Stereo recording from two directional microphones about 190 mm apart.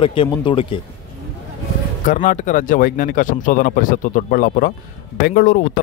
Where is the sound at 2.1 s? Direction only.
40° left (ahead or behind).